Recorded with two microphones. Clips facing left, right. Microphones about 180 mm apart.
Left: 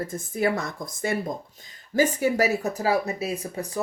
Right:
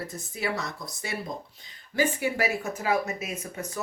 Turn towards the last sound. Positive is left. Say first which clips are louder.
# left 6 dB
turn(degrees=35)  # may be behind; listen again after turning